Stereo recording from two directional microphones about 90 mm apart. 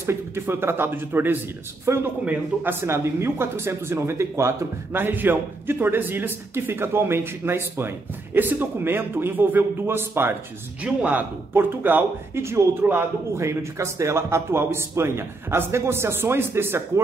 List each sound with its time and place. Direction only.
0.0 s a man's voice: 30° right (ahead or behind)